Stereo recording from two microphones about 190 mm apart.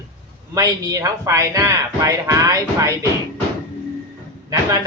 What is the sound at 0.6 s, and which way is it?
A man's voice, 20° right (ahead or behind).